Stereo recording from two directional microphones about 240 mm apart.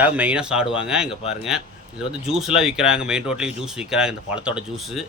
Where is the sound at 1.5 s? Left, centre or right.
Centre.